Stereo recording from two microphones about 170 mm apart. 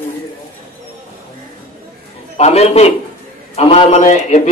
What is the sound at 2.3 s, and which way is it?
A man's voice, 40° left (ahead or behind).